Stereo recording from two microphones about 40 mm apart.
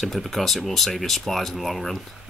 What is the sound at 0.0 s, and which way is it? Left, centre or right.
Speech, centre.